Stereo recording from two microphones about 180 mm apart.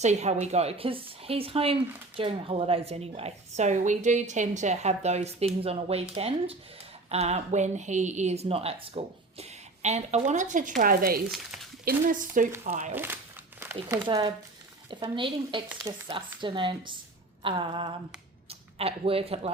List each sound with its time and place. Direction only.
0.0 s speech: 40° right (ahead or behind)
11.3 s speech: centre (ahead or behind)
11.9 s speech: 50° right (ahead or behind)
12.9 s speech: 10° right (ahead or behind); by 19.5 s 35° right (ahead or behind)